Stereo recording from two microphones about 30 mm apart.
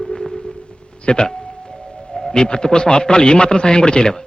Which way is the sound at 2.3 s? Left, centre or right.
Left.